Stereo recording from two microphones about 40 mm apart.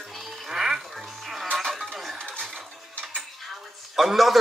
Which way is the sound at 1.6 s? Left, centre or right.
Centre.